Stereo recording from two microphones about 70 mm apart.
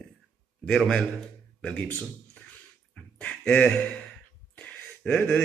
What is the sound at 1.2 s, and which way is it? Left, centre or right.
Speech, centre.